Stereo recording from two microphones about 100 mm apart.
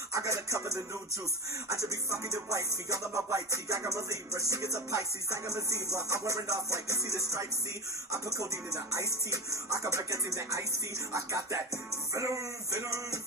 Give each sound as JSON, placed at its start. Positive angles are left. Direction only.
{"t": 0.1, "sound": "music", "side_deg": -30}